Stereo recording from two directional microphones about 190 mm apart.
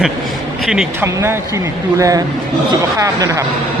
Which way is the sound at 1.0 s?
15° right (ahead or behind).